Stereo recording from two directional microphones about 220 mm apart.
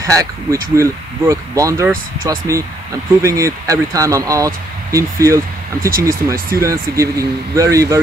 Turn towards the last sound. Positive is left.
turn(degrees=-15)  # may be behind; listen again after turning